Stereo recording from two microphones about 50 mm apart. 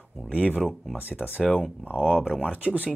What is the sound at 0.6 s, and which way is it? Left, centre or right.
Speech, centre.